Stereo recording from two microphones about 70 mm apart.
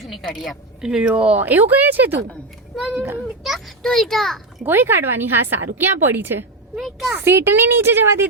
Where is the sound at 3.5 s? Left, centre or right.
Centre.